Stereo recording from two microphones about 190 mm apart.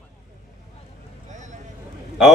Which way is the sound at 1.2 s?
40° right (ahead or behind).